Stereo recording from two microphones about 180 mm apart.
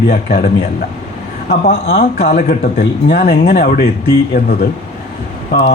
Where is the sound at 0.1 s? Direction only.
55° left (ahead or behind).